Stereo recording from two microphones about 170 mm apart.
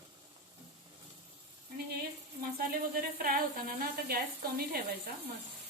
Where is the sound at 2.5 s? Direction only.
60° right (ahead or behind).